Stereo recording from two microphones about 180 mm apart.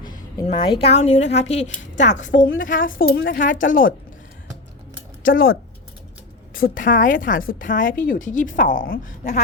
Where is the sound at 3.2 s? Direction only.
50° left (ahead or behind).